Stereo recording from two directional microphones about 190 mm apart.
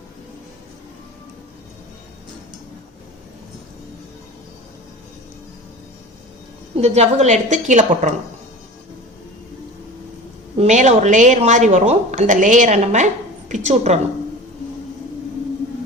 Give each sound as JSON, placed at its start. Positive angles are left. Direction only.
{"t": 6.7, "sound": "speech", "side_deg": -35}
{"t": 10.6, "sound": "speech", "side_deg": -40}